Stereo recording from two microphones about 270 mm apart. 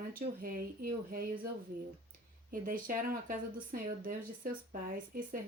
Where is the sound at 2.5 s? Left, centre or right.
Right.